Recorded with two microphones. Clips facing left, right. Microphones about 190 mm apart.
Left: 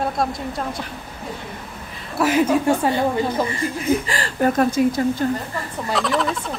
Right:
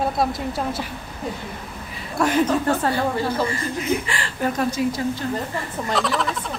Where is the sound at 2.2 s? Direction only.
5° left (ahead or behind).